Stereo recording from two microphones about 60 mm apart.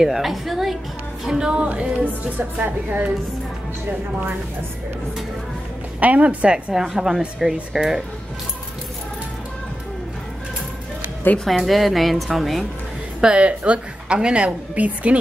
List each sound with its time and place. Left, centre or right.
0.0 s a woman's voice: centre; by 3.1 s right
5.9 s speech: right
6.5 s a woman's voice: centre
11.4 s speech: centre
13.2 s a woman's voice: centre